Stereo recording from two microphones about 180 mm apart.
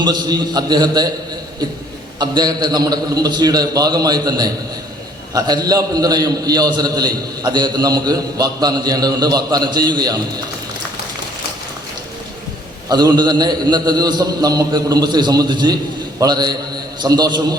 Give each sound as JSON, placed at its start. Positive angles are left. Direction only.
{"t": 0.0, "sound": "a man's voice", "side_deg": -25}
{"t": 2.1, "sound": "a man's voice", "side_deg": -25}
{"t": 12.9, "sound": "a man's voice", "side_deg": -20}